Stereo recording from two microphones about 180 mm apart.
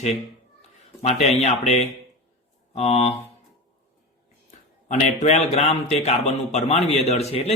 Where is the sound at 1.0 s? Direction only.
35° left (ahead or behind).